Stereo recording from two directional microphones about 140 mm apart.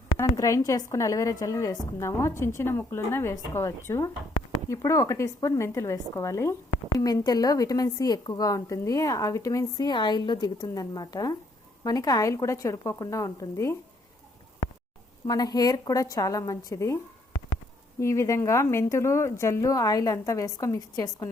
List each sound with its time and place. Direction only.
0.2 s a woman's voice: 20° left (ahead or behind)
15.3 s a woman's voice: 25° left (ahead or behind)
18.0 s a woman's voice: 20° left (ahead or behind)